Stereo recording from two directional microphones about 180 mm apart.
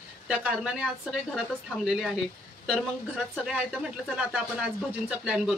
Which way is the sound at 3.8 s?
5° right (ahead or behind).